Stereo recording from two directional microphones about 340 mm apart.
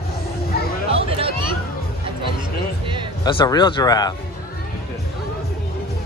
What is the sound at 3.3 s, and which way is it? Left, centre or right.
Snicker, centre.